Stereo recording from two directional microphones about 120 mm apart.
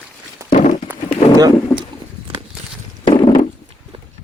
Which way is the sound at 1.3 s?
30° right (ahead or behind).